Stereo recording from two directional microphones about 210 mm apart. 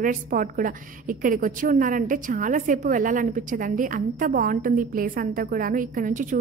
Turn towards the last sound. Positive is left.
turn(degrees=-40)  # may be behind; listen again after turning